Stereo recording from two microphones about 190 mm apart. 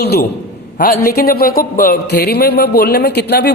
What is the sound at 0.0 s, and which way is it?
A man's voice, 55° left (ahead or behind).